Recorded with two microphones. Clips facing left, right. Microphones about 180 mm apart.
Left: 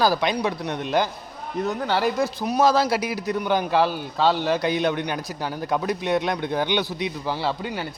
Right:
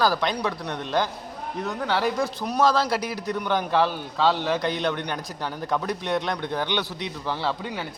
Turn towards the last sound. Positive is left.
turn(degrees=5)  # may be behind; listen again after turning